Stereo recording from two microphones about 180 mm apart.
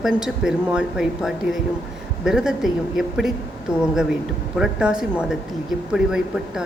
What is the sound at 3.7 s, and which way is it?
Speech, 15° left (ahead or behind).